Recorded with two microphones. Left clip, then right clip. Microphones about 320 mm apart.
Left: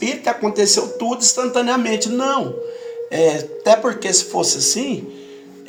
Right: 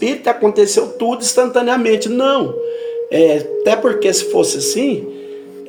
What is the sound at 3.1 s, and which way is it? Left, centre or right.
Speech, left.